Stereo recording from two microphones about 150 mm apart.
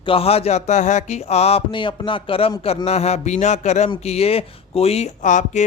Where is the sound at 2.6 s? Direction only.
45° left (ahead or behind).